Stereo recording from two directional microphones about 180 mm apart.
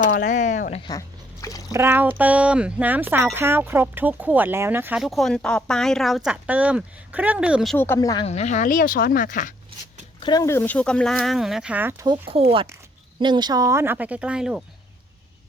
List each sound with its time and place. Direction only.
0.0 s speech: 50° left (ahead or behind)
0.8 s speech: 20° left (ahead or behind)
1.7 s speech: 10° right (ahead or behind)
7.8 s speech: 15° left (ahead or behind)
8.3 s speech: 40° left (ahead or behind)
10.2 s speech: 25° left (ahead or behind); by 12.0 s 10° right (ahead or behind)
12.3 s speech: 30° right (ahead or behind); by 14.6 s 5° right (ahead or behind)